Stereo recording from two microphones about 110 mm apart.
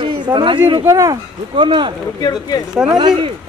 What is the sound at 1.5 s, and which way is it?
Speech, 45° right (ahead or behind).